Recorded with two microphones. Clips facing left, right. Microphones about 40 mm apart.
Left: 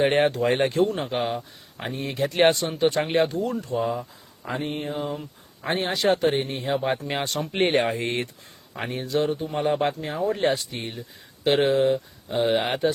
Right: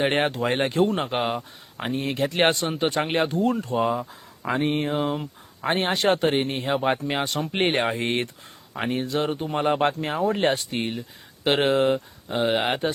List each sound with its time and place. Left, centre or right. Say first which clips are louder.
0.0 s speech: left 2 dB; centre
0.9 s speech: right 2 dB; right
1.2 s speech: right 1 dB; right
1.8 s speech: right 2 dB; centre
2.6 s speech: left 1 dB; centre
3.3 s speech: right 3 dB; right
4.5 s a sound: right 5 dB; right
4.9 s speech: right 4 dB; right
5.6 s speech: right 1 dB; right
7.1 s speech: right 1 dB; centre
7.5 s speech: left 2 dB; centre
12.3 s speech: even; centre